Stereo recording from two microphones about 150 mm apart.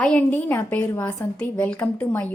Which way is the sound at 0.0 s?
10° left (ahead or behind).